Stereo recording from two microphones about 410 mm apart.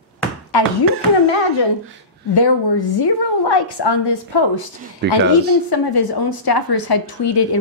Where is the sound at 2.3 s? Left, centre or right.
Left.